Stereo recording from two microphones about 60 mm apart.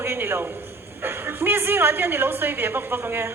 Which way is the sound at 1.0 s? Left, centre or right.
Right.